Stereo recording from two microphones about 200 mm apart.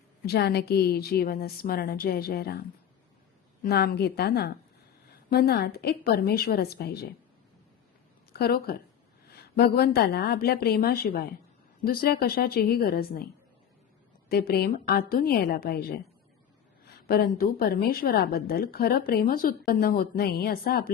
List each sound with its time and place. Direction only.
0.3 s a woman's voice: 55° left (ahead or behind)
8.3 s a woman's voice: 50° left (ahead or behind)
14.3 s a woman's voice: 50° left (ahead or behind)